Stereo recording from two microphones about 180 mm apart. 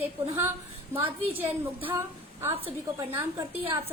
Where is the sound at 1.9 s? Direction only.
15° right (ahead or behind).